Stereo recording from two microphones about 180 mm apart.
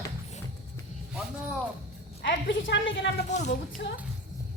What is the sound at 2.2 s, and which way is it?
Speech, 85° left.